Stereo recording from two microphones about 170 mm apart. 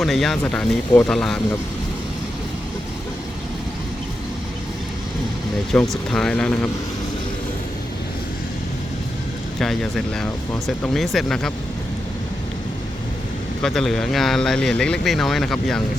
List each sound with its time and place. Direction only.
0.0 s speech: centre (ahead or behind)
5.7 s speech: 5° left (ahead or behind)
9.6 s speech: centre (ahead or behind)
13.6 s speech: centre (ahead or behind)